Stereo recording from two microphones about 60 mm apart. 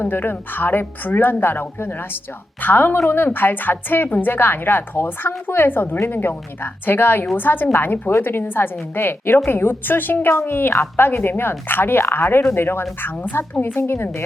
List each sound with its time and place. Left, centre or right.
0.0 s a woman's voice: left